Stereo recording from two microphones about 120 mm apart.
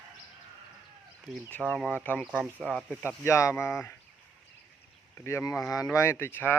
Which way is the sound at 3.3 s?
25° left (ahead or behind).